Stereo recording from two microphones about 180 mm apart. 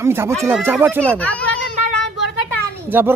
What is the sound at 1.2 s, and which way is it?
Speech, 5° left (ahead or behind).